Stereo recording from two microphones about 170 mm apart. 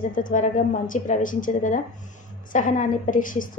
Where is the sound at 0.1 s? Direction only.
50° left (ahead or behind).